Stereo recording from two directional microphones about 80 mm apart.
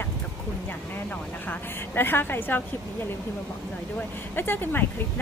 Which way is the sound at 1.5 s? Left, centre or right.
Left.